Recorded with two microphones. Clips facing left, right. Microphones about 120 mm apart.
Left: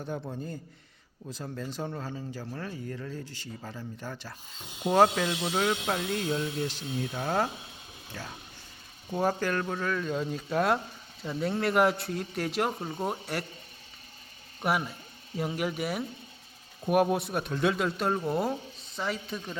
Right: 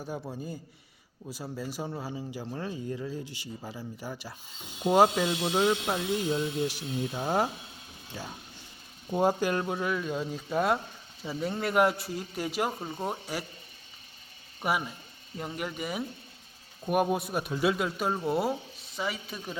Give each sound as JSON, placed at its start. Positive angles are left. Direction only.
{"t": 0.0, "sound": "a man's voice", "side_deg": -5}
{"t": 14.6, "sound": "a man's voice", "side_deg": 0}